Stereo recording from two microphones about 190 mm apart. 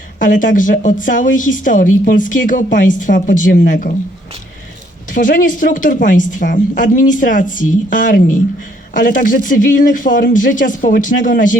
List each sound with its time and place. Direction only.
0.2 s a woman's voice: 45° left (ahead or behind)
5.1 s a woman's voice: 45° left (ahead or behind)